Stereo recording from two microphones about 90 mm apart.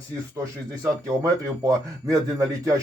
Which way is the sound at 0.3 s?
35° right (ahead or behind).